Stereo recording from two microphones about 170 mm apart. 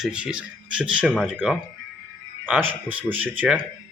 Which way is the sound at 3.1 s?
10° right (ahead or behind).